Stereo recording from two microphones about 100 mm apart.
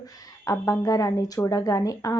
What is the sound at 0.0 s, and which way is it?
A woman's voice, 30° left (ahead or behind).